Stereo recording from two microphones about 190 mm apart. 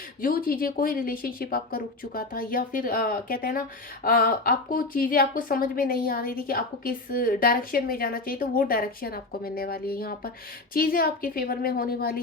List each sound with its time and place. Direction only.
0.2 s a woman's voice: 50° left (ahead or behind)